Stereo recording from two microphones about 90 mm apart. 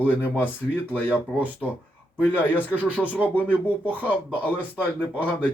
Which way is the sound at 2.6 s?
15° right (ahead or behind).